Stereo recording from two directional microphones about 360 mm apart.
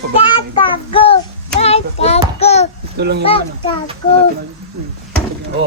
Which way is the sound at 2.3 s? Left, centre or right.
Centre.